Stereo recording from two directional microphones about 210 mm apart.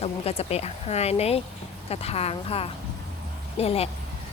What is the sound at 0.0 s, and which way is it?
Speech, 30° left (ahead or behind).